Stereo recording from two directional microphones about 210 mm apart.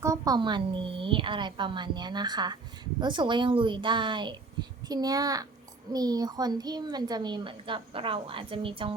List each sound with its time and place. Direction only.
0.0 s a woman's voice: 15° right (ahead or behind)